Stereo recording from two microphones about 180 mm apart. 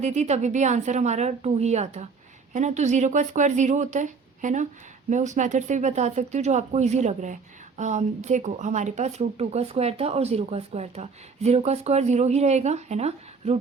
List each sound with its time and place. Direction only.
0.0 s speech: 40° right (ahead or behind)